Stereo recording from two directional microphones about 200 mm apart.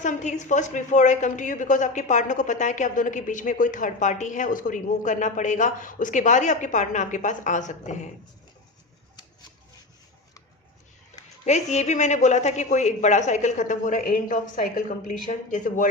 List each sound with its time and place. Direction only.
0.0 s a woman's voice: 35° left (ahead or behind)
11.4 s a woman's voice: 35° left (ahead or behind)